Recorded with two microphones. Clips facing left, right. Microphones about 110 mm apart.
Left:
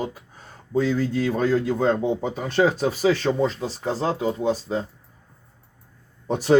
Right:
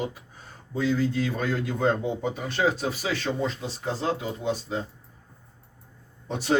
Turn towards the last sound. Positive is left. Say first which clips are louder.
# left 7 dB
turn(degrees=45)  # may be behind; listen again after turning